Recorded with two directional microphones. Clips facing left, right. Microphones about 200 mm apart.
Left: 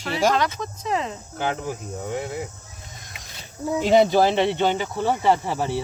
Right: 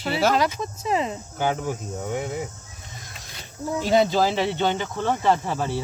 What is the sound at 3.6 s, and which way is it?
Speech, 15° left (ahead or behind).